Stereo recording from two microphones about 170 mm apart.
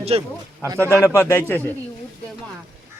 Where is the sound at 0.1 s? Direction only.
35° right (ahead or behind).